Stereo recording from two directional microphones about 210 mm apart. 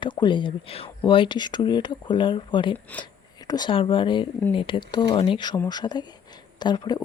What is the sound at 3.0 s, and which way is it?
Speech, 20° left (ahead or behind).